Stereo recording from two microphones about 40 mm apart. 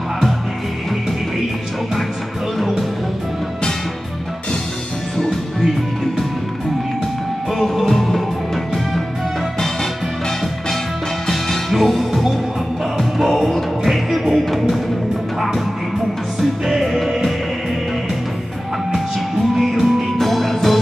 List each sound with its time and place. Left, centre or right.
7.5 s music: centre
11.2 s music: centre
11.7 s music: centre
16.3 s music: centre
19.5 s music: centre